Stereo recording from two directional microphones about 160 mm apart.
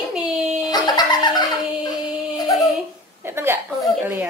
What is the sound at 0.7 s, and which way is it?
Fowl, 25° left (ahead or behind).